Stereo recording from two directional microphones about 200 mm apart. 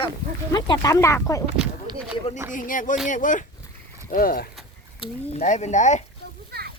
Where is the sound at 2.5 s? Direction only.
40° left (ahead or behind).